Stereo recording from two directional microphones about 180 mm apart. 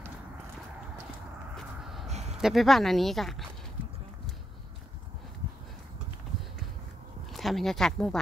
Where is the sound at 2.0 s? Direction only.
40° right (ahead or behind).